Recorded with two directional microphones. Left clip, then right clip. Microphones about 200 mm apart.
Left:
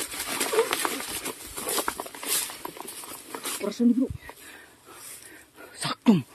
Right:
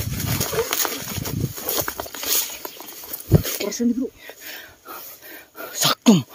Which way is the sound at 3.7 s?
25° right (ahead or behind).